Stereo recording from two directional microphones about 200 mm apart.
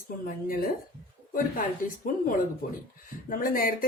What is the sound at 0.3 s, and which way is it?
Speech, 45° left (ahead or behind).